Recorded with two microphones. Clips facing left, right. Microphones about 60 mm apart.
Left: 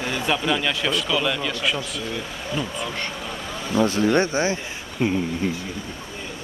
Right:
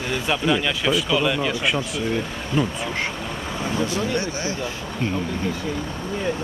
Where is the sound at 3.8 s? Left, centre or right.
Left.